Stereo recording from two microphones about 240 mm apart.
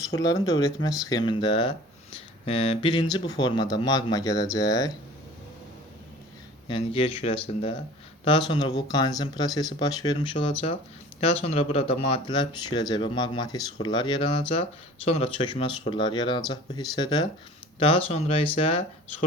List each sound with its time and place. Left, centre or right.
0.1 s speech: centre
6.7 s speech: left